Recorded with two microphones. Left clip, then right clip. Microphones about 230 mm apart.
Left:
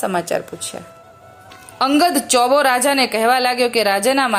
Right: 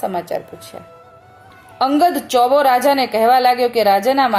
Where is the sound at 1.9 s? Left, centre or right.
Centre.